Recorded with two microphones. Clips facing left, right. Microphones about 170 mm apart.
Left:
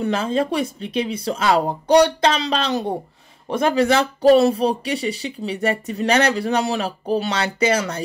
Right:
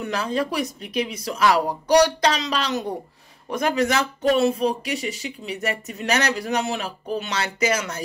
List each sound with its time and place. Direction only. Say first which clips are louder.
0.0 s speech: left 4 dB; 25° left (ahead or behind)